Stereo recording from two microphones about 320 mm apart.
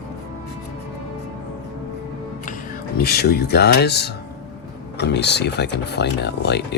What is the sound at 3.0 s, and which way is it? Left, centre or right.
Speech, left.